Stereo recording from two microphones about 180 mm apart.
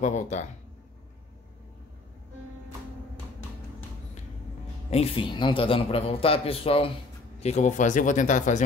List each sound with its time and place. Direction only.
0.0 s a man's voice: 40° left (ahead or behind)
4.9 s a man's voice: 30° left (ahead or behind)